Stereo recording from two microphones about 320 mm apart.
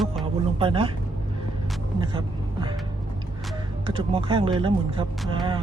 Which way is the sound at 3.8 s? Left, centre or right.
Centre.